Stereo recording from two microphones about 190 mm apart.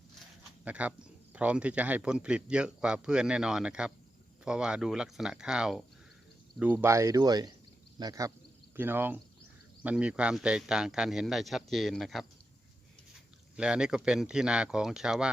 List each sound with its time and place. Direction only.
0.6 s a man's voice: 5° right (ahead or behind)
13.6 s a man's voice: 5° right (ahead or behind)